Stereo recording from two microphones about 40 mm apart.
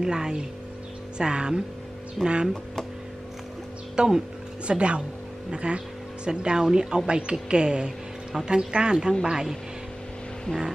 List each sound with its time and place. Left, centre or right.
0.0 s speech: centre
2.2 s speech: centre
3.9 s speech: right